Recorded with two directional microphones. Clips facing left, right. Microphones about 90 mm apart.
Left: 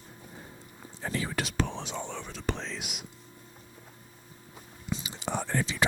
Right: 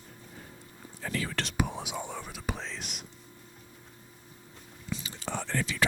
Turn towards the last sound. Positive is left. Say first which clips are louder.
# left 2 dB
turn(degrees=20)  # may be behind; listen again after turning